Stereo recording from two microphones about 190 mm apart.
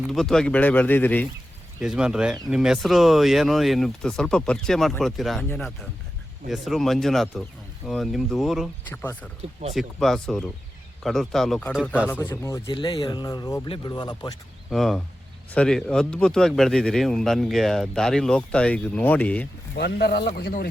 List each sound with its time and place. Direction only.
0.1 s speech: centre (ahead or behind)
1.8 s speech: 5° right (ahead or behind); by 14.3 s 20° left (ahead or behind)
14.7 s speech: centre (ahead or behind)
19.7 s speech: 55° left (ahead or behind)